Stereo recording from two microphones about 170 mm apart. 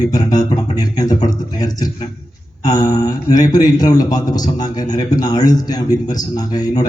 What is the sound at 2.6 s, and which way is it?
Speech, 25° left (ahead or behind).